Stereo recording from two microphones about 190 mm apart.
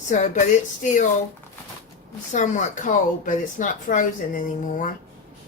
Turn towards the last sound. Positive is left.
turn(degrees=45)  # may be behind; listen again after turning